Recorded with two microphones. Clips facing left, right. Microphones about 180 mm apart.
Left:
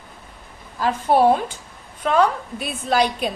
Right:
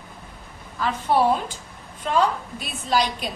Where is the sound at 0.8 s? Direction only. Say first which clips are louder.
Left 4 dB; 45° left (ahead or behind).